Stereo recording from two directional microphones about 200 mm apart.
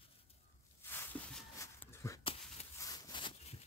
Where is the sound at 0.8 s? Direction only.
10° left (ahead or behind).